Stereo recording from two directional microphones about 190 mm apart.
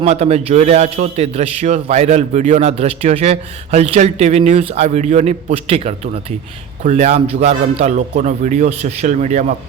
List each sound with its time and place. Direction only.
0.0 s a man's voice: 35° right (ahead or behind)